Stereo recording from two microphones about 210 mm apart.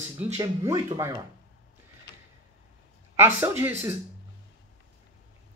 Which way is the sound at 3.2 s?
10° right (ahead or behind).